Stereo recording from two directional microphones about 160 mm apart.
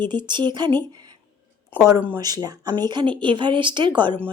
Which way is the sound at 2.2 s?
25° right (ahead or behind).